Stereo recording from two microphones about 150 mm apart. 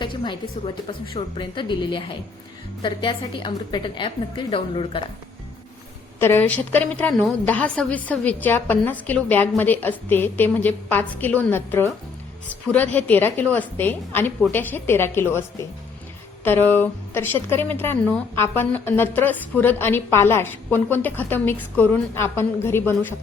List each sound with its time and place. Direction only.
0.0 s a woman's voice: 30° left (ahead or behind)
6.1 s a woman's voice: 15° left (ahead or behind)